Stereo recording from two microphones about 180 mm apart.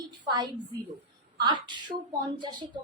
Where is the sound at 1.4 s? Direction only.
25° right (ahead or behind).